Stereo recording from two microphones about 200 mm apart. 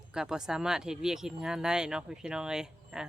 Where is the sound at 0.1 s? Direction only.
5° right (ahead or behind).